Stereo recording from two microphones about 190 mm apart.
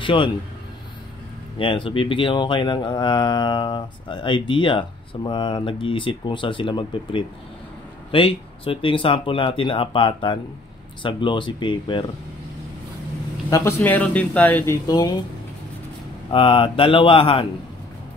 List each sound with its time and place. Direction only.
0.0 s speech: 25° left (ahead or behind)
1.6 s speech: 30° left (ahead or behind)
13.5 s speech: 10° left (ahead or behind)
14.9 s speech: 20° left (ahead or behind)
16.3 s speech: 25° left (ahead or behind)